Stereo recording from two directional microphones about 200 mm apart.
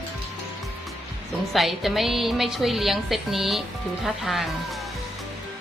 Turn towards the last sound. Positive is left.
turn(degrees=0)  # may be behind; listen again after turning